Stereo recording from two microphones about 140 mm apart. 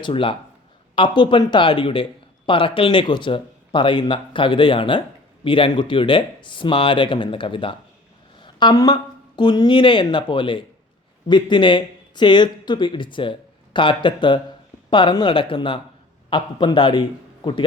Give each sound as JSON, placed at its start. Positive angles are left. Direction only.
{"t": 0.0, "sound": "speech", "side_deg": 40}